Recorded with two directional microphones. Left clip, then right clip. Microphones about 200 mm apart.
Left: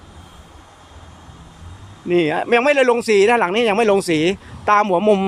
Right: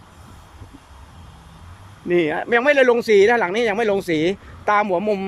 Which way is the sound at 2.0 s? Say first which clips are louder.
Left 2 dB; centre (ahead or behind).